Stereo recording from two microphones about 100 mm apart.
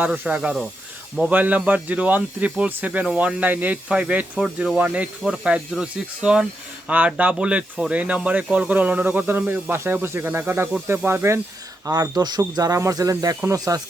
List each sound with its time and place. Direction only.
0.0 s speech: 15° right (ahead or behind)
11.9 s speech: 40° right (ahead or behind)